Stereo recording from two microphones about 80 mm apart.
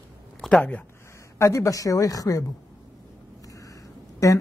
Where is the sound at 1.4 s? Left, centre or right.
Left.